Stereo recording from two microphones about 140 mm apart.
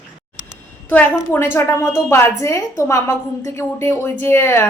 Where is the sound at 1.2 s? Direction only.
15° left (ahead or behind).